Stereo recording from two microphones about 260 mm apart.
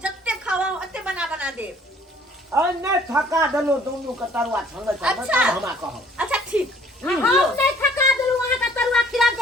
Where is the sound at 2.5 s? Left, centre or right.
Centre.